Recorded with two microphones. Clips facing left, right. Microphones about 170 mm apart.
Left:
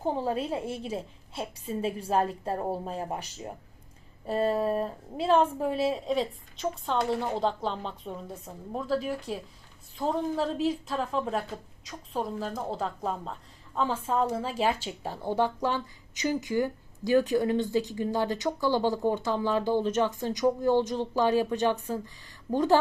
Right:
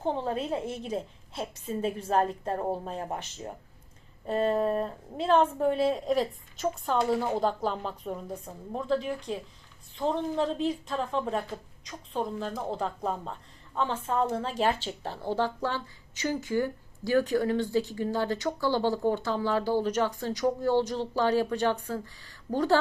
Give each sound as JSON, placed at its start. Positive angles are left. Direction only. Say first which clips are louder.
{"t": 0.0, "sound": "speech", "louder": "left 1 dB", "side_deg": 10}
{"t": 2.0, "sound": "speech", "louder": "right 1 dB", "side_deg": 10}
{"t": 4.3, "sound": "a woman's voice", "louder": "even", "side_deg": 5}